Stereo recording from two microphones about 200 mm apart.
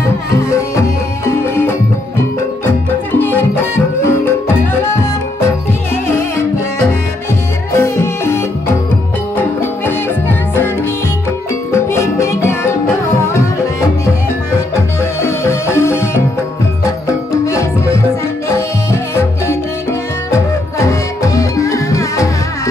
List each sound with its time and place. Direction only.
0.5 s music: 15° left (ahead or behind)
3.2 s music: 10° left (ahead or behind)
5.7 s music: 10° left (ahead or behind)
7.7 s music: 15° left (ahead or behind)
11.7 s music: 15° left (ahead or behind)
17.5 s music: 15° left (ahead or behind)